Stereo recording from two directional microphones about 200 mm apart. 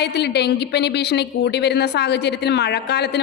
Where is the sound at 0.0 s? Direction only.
55° left (ahead or behind).